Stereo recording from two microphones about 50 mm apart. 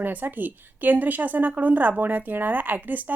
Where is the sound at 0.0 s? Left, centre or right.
Right.